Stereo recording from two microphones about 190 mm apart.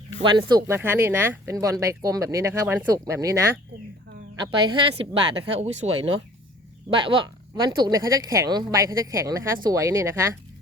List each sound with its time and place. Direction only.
0.2 s speech: 25° right (ahead or behind)